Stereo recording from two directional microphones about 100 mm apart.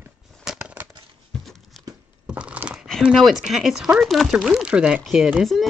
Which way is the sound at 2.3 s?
10° right (ahead or behind).